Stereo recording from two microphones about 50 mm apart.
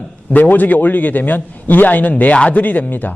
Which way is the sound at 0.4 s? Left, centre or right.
Left.